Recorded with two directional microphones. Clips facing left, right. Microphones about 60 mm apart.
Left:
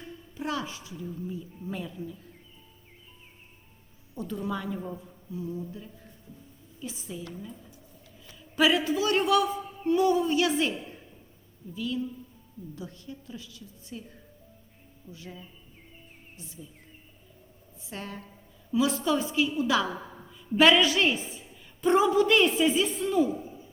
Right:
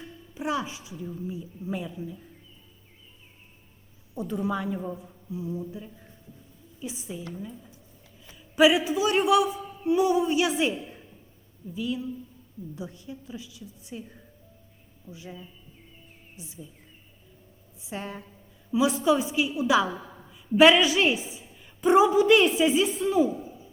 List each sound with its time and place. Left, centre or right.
0.3 s a woman's voice: centre
4.1 s a woman's voice: centre
8.3 s a woman's voice: centre
15.0 s a woman's voice: centre
17.8 s a woman's voice: centre